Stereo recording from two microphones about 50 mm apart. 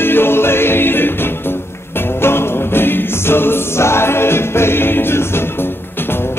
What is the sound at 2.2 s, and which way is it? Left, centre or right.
Choir, left.